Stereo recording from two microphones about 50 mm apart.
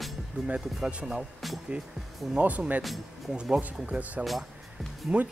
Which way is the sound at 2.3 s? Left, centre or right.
Right.